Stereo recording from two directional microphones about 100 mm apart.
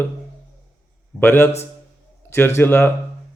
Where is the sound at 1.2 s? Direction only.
20° left (ahead or behind).